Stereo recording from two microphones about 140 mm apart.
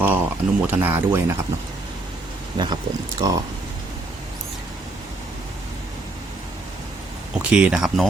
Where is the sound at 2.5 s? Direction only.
30° right (ahead or behind).